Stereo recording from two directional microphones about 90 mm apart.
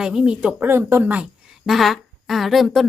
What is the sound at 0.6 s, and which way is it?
Speech, 25° right (ahead or behind).